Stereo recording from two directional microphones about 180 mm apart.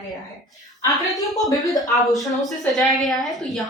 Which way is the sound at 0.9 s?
Centre (ahead or behind).